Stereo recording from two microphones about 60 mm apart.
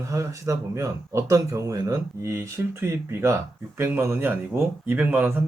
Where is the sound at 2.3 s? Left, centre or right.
Right.